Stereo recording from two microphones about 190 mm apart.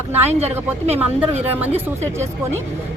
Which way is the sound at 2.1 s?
15° right (ahead or behind).